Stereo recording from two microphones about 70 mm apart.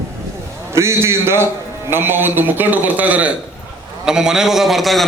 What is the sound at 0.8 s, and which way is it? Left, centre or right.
A man's voice, right.